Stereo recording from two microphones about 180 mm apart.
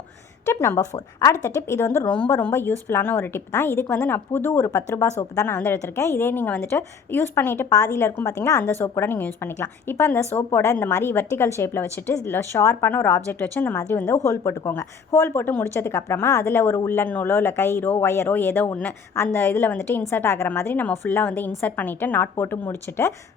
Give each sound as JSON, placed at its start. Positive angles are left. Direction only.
{"t": 0.4, "sound": "a woman's voice", "side_deg": 15}